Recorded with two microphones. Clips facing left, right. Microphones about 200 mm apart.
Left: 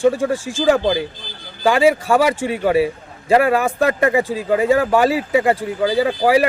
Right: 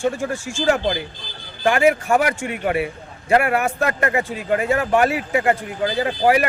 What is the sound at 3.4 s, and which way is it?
Speech, 90° left.